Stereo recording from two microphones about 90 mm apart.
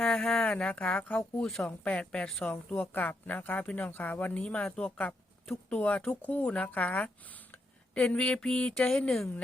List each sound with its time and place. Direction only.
0.0 s speech: 10° left (ahead or behind)